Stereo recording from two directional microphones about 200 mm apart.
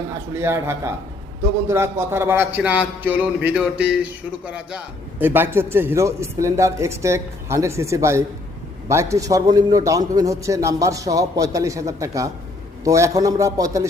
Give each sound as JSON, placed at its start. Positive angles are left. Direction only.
{"t": 0.3, "sound": "a man's voice", "side_deg": -15}